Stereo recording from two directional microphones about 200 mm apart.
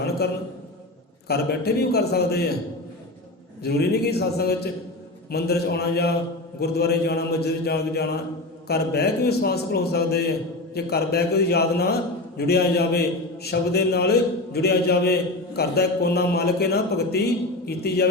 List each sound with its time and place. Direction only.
1.3 s a man's voice: 50° left (ahead or behind)
3.6 s a man's voice: 55° left (ahead or behind)